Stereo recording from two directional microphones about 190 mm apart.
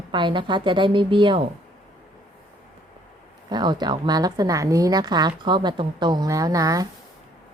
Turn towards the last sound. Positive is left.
turn(degrees=-20)  # may be behind; listen again after turning